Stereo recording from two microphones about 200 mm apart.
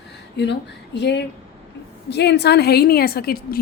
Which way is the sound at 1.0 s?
60° left (ahead or behind).